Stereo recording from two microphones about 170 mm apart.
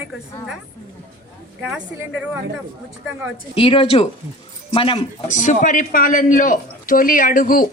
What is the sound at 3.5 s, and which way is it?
Speech, 30° left (ahead or behind).